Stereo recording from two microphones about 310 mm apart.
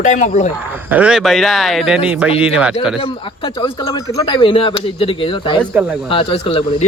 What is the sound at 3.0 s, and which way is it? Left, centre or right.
A man's voice, centre.